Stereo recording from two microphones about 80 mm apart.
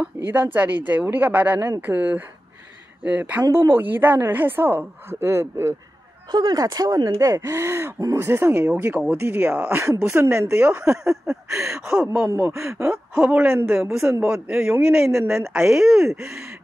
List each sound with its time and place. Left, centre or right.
0.3 s a woman's voice: right
6.3 s speech: right
11.2 s speech: centre
12.5 s speech: right
13.2 s a woman's voice: centre
13.6 s speech: right
14.2 s speech: centre
15.1 s speech: right
15.5 s speech: centre